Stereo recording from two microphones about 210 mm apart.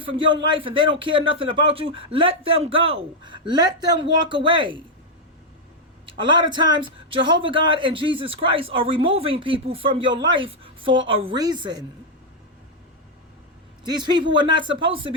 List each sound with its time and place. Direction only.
0.0 s a man's voice: 25° right (ahead or behind)
6.1 s a man's voice: 25° right (ahead or behind)
13.8 s a man's voice: 20° right (ahead or behind)